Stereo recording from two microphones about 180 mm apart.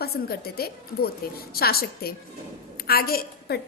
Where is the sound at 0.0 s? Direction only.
60° left (ahead or behind).